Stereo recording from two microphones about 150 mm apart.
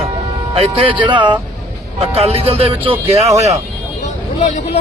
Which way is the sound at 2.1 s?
40° right (ahead or behind).